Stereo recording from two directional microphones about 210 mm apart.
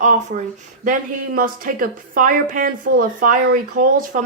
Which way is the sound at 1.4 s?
40° right (ahead or behind).